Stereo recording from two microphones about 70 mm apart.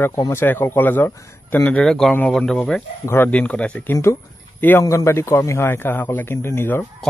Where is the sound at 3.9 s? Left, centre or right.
Left.